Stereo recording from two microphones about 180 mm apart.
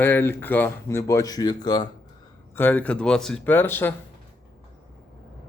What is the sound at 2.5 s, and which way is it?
Speech, 10° left (ahead or behind).